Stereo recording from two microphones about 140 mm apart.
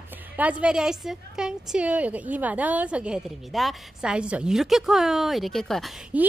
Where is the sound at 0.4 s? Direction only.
10° right (ahead or behind).